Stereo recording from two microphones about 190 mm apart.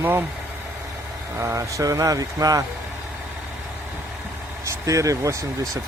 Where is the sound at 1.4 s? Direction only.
15° right (ahead or behind).